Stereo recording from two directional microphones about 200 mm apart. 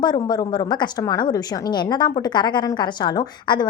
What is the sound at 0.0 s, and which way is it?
A woman's voice, 20° left (ahead or behind).